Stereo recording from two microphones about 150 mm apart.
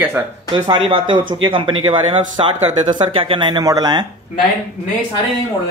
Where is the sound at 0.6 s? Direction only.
35° right (ahead or behind).